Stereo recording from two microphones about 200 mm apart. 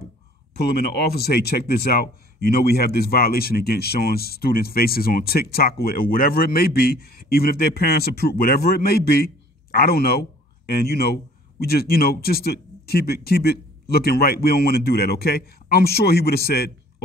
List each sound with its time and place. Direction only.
0.6 s speech: 55° left (ahead or behind)